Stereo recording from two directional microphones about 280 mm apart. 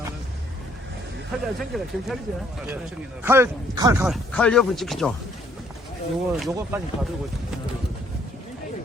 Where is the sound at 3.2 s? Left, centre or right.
Centre.